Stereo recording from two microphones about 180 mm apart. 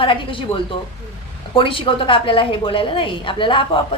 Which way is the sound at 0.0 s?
30° left (ahead or behind).